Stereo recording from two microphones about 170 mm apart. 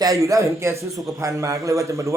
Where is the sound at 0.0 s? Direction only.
20° right (ahead or behind).